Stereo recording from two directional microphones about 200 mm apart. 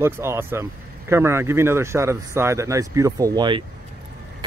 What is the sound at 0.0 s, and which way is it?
Speech, 10° right (ahead or behind).